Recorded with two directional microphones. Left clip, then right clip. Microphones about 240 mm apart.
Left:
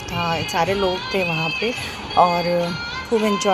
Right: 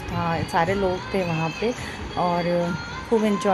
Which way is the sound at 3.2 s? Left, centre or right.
Left.